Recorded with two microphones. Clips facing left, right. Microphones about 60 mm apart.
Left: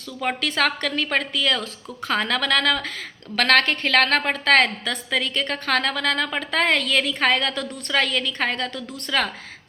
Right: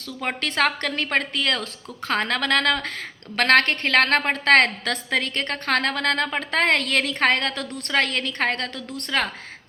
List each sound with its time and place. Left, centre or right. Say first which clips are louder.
0.4 s a woman's voice: right 1 dB; right